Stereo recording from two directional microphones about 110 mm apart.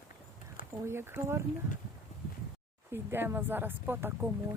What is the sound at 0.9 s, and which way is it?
Speech, 20° right (ahead or behind).